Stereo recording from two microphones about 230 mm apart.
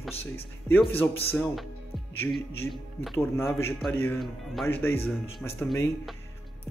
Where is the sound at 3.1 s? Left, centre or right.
Centre.